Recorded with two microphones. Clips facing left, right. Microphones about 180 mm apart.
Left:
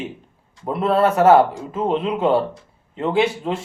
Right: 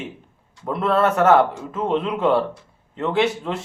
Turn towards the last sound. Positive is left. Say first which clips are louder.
# left 1 dB
turn(degrees=25)  # may be behind; listen again after turning